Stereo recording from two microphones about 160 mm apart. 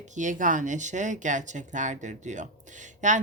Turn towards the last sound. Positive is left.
turn(degrees=-50)  # may be behind; listen again after turning